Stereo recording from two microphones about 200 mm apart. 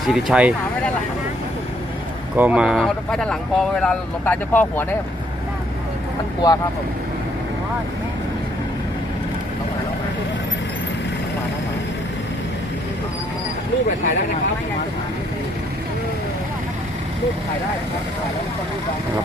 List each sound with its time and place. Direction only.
0.1 s speech: 5° right (ahead or behind)
2.3 s speech: 5° right (ahead or behind)
6.4 s speech: 20° left (ahead or behind)